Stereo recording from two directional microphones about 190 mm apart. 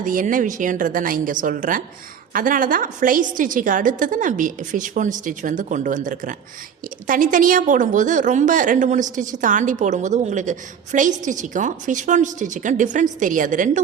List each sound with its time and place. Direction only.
0.0 s a woman's voice: 45° right (ahead or behind)